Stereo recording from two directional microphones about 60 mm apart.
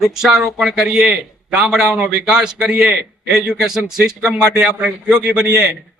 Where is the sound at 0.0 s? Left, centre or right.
Centre.